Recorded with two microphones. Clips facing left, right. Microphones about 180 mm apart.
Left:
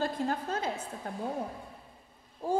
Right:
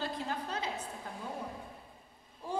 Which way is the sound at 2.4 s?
45° left (ahead or behind).